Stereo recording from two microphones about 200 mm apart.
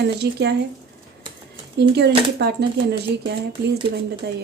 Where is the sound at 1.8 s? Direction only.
55° right (ahead or behind).